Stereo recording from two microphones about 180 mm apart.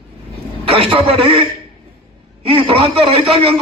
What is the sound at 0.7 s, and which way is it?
Speech, 30° right (ahead or behind).